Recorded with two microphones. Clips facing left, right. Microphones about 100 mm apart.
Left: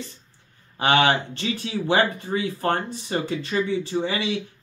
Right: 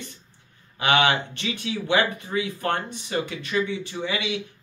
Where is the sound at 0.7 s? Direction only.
35° left (ahead or behind).